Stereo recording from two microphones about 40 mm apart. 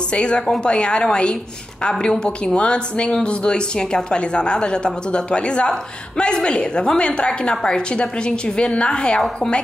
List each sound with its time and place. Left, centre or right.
0.1 s a woman's voice: left